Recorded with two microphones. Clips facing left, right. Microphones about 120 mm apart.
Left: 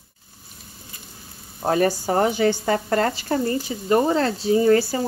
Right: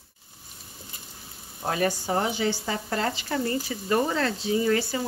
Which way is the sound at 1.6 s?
40° left (ahead or behind).